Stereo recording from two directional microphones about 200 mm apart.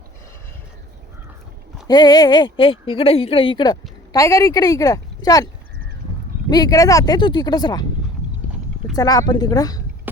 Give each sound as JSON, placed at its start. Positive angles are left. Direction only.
{"t": 1.9, "sound": "a woman's voice", "side_deg": 20}
{"t": 6.5, "sound": "speech", "side_deg": 20}
{"t": 9.0, "sound": "speech", "side_deg": 20}